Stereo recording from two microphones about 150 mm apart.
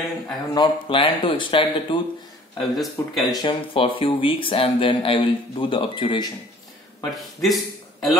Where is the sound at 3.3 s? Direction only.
30° left (ahead or behind).